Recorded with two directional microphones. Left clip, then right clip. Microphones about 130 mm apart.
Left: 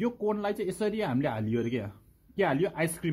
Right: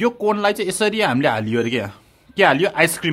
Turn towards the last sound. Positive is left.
turn(degrees=-25)  # may be behind; listen again after turning